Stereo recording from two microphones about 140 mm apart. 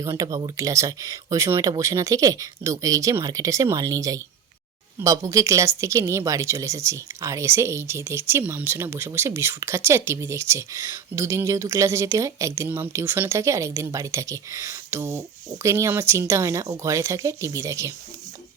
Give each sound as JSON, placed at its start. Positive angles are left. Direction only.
{"t": 0.1, "sound": "speech", "side_deg": -25}